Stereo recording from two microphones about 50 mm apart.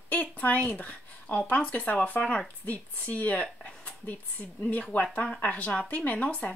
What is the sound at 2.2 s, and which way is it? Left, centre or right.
Speech, centre.